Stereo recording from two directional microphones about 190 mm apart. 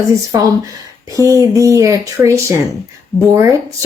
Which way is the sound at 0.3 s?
15° right (ahead or behind).